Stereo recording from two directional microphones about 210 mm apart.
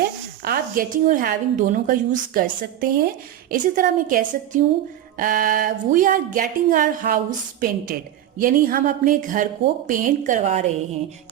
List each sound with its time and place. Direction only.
0.0 s a woman's voice: 45° right (ahead or behind)